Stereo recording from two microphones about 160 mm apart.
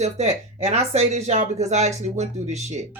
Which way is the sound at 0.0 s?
40° right (ahead or behind).